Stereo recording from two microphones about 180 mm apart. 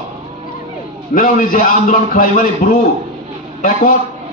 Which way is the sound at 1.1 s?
50° left (ahead or behind).